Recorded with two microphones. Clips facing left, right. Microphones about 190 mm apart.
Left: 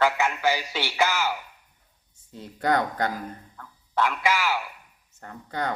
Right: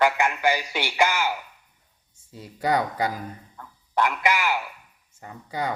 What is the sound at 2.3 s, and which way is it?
A man's voice, 5° right (ahead or behind).